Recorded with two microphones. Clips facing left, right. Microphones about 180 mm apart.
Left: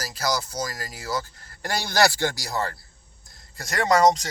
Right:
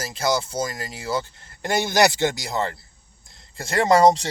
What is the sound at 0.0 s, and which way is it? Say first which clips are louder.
A man's voice: right 4 dB; 25° right (ahead or behind).